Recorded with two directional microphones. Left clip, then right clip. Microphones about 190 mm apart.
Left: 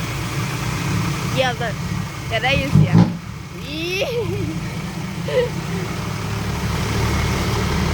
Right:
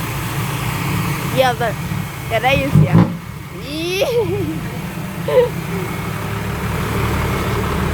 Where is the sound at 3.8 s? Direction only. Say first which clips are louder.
Right 4 dB; 20° right (ahead or behind).